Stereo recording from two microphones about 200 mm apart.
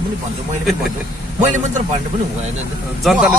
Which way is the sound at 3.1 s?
5° right (ahead or behind).